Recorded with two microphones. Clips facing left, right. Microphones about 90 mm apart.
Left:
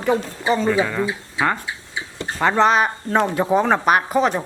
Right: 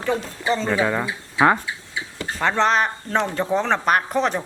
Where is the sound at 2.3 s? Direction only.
5° left (ahead or behind).